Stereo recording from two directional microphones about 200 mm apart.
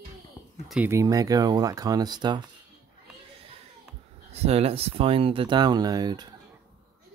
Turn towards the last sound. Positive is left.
turn(degrees=-20)  # may be behind; listen again after turning